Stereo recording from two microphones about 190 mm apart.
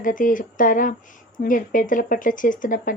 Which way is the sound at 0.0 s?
45° left (ahead or behind).